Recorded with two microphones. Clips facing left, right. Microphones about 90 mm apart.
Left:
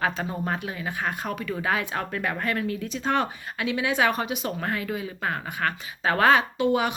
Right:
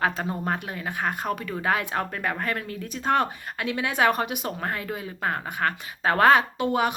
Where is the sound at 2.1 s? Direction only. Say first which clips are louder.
Left 1 dB; 35° right (ahead or behind); by 4.5 s 50° right (ahead or behind).